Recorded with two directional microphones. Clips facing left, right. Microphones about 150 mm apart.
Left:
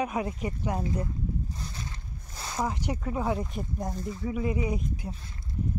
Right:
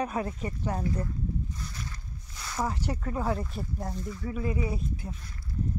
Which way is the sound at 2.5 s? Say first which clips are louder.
Left 1 dB; 15° left (ahead or behind).